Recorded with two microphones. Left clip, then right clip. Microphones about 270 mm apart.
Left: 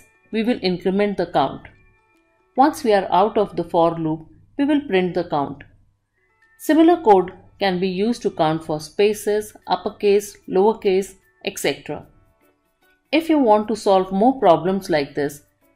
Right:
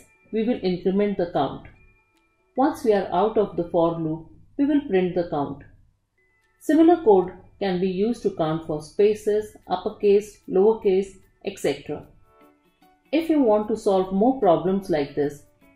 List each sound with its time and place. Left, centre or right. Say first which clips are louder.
0.3 s speech: left 3 dB; centre
2.5 s speech: left 5 dB; centre
7.5 s speech: left 4 dB; centre
13.1 s speech: left 4 dB; centre